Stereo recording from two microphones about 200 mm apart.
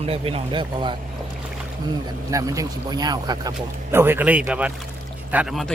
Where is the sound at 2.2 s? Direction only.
15° right (ahead or behind).